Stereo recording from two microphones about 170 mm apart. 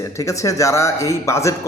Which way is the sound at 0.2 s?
20° left (ahead or behind).